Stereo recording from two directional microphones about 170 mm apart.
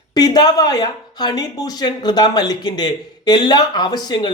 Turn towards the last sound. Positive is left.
turn(degrees=25)  # may be behind; listen again after turning